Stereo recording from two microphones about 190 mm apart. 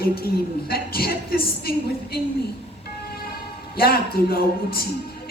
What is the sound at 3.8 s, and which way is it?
Speech, 55° left (ahead or behind).